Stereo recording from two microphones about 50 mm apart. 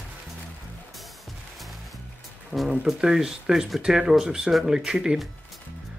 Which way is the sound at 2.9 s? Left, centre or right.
Centre.